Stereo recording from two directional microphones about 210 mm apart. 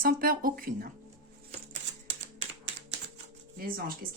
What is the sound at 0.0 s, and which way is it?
Speech, 45° right (ahead or behind).